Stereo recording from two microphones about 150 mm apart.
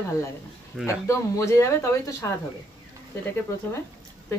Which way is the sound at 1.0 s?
20° left (ahead or behind).